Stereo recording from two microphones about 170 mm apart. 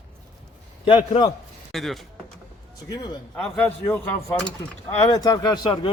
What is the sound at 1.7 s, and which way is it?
Speech, centre (ahead or behind).